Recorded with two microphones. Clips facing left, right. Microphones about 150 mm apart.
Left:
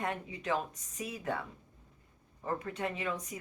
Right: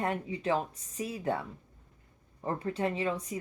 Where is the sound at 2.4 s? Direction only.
30° right (ahead or behind).